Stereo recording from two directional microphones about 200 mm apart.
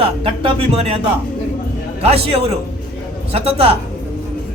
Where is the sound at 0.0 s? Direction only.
30° right (ahead or behind).